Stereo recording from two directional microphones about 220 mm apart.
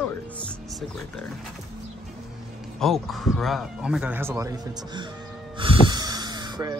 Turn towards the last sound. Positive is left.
turn(degrees=-20)  # may be behind; listen again after turning